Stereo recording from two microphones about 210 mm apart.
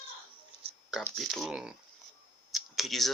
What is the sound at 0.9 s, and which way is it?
Speech, centre (ahead or behind).